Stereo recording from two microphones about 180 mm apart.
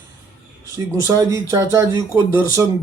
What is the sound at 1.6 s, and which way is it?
Speech, 15° right (ahead or behind).